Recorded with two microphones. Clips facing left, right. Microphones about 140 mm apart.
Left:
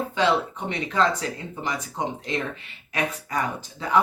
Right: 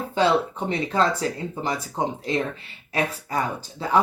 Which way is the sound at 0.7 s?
35° right (ahead or behind).